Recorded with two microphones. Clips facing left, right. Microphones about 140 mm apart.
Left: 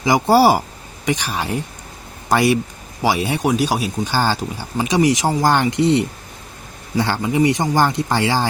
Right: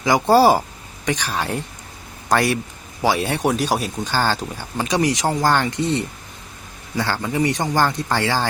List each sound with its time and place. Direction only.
0.0 s speech: 10° left (ahead or behind)